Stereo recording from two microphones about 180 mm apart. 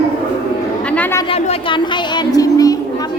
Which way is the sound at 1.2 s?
30° left (ahead or behind).